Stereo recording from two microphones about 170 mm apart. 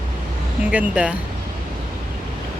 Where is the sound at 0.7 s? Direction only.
10° right (ahead or behind).